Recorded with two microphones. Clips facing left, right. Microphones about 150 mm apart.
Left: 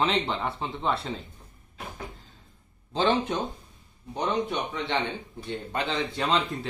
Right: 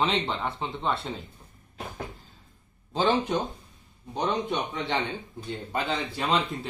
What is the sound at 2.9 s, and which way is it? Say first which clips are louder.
A man's voice: even; 10° right (ahead or behind).